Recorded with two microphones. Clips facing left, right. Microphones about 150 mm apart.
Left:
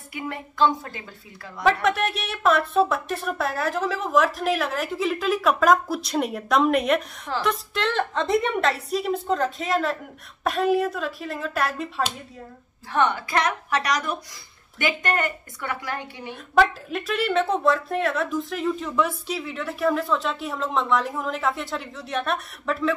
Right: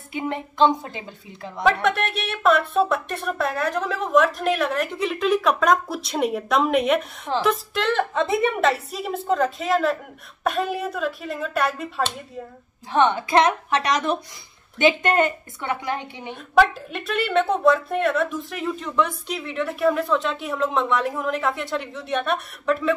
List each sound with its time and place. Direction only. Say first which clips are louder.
0.1 s a woman's voice: right 5 dB; 20° right (ahead or behind)
1.6 s speech: right 1 dB; centre (ahead or behind)
12.9 s a woman's voice: right 4 dB; 20° right (ahead or behind)
16.5 s speech: right 2 dB; centre (ahead or behind)